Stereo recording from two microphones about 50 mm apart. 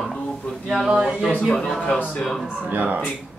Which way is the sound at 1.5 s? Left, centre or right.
Centre.